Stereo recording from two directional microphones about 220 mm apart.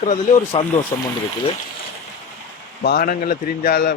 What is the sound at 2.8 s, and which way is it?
A man's voice, 40° left (ahead or behind).